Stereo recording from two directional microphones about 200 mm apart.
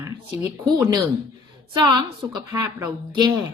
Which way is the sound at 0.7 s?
20° right (ahead or behind).